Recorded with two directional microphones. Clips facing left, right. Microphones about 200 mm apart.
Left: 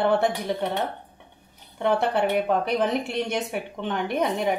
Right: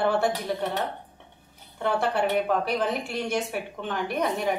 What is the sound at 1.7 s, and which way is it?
A woman's voice, 20° left (ahead or behind).